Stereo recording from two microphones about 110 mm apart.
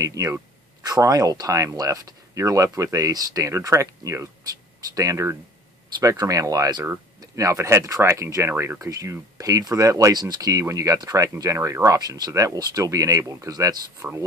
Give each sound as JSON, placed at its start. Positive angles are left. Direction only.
{"t": 0.0, "sound": "speech", "side_deg": -30}